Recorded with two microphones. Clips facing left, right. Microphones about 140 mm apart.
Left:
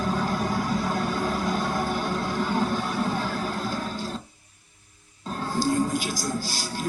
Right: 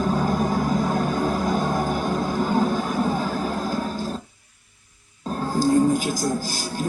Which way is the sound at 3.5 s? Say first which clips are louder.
Right 4 dB; 45° right (ahead or behind).